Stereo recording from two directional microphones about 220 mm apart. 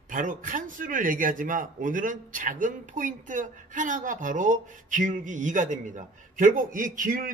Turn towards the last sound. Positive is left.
turn(degrees=-40)  # may be behind; listen again after turning